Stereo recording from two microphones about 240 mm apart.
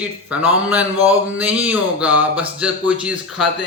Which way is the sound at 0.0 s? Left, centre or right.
Centre.